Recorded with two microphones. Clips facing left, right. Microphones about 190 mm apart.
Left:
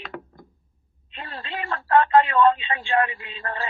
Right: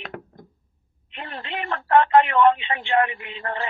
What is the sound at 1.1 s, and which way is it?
Speech, 20° right (ahead or behind).